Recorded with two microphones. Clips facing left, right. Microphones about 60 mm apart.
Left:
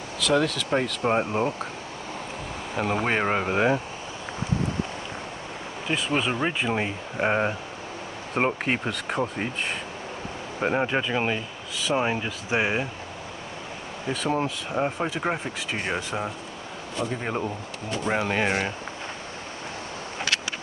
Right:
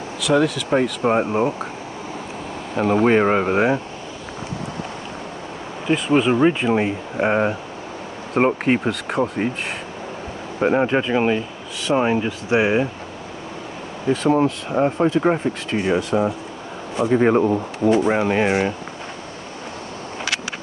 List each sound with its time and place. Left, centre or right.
0.2 s speech: centre
2.7 s speech: centre
5.9 s speech: centre
10.6 s speech: centre
14.0 s speech: centre
17.1 s speech: right
18.3 s speech: centre